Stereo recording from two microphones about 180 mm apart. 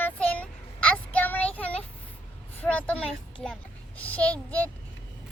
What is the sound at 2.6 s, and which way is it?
A child's voice, 10° left (ahead or behind).